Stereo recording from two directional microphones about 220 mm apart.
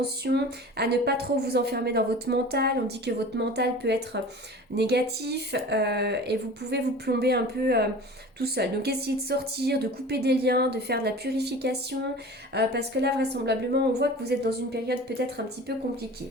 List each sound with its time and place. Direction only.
0.0 s a woman's voice: 45° right (ahead or behind)